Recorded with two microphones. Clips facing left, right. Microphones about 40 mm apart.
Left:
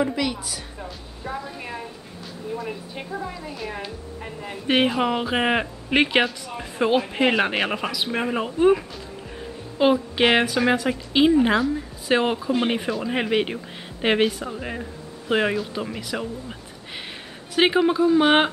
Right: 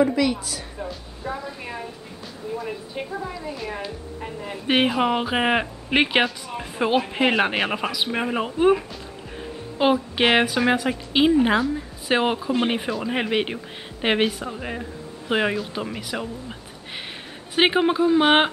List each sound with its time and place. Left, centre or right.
0.0 s music: centre
2.5 s a woman's voice: centre
9.8 s a woman's voice: centre
17.6 s speech: right